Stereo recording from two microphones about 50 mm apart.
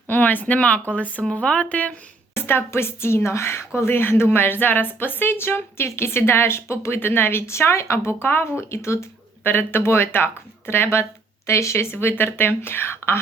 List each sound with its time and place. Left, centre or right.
0.1 s speech: left
2.3 s a woman's voice: left
3.8 s a woman's voice: left
8.7 s speech: left
9.4 s speech: left
11.4 s speech: left
11.9 s speech: left